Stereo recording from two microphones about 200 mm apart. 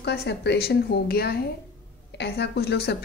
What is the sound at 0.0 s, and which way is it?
A woman's voice, 55° left (ahead or behind).